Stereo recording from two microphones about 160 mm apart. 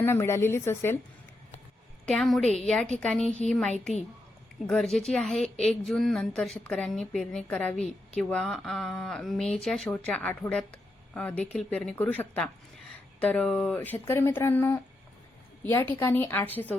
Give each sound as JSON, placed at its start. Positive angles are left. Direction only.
{"t": 0.0, "sound": "speech", "side_deg": 15}
{"t": 2.0, "sound": "a woman's voice", "side_deg": 0}